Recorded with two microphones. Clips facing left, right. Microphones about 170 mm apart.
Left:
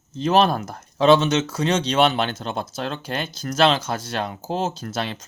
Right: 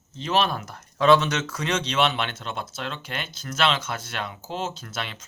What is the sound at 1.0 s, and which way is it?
Speech, 25° left (ahead or behind).